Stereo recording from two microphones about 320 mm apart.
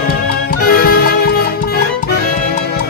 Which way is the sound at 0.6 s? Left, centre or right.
Left.